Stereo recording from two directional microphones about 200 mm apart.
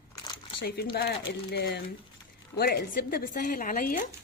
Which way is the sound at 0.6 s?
50° left (ahead or behind).